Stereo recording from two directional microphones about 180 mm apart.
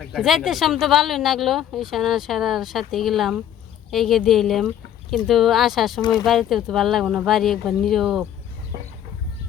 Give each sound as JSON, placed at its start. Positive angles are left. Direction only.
{"t": 0.0, "sound": "speech", "side_deg": 0}
{"t": 6.0, "sound": "speech", "side_deg": 25}
{"t": 6.2, "sound": "speech", "side_deg": 0}